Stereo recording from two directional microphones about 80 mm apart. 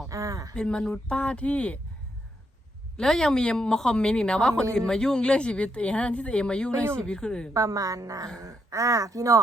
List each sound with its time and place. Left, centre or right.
0.1 s a sound: right
0.5 s speech: centre
3.0 s speech: centre
7.5 s speech: right